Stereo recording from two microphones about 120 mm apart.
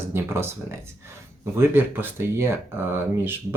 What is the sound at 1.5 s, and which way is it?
Speech, 20° right (ahead or behind).